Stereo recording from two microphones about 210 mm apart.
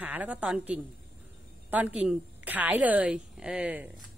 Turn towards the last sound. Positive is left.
turn(degrees=-5)  # may be behind; listen again after turning